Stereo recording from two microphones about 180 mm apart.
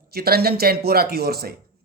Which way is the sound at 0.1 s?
60° right (ahead or behind).